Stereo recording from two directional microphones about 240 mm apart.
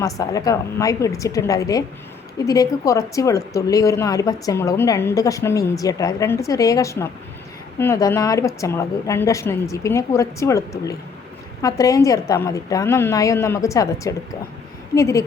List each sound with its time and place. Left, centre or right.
0.0 s speech: centre